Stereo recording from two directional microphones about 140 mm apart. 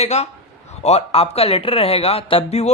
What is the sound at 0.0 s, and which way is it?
Speech, 50° left (ahead or behind).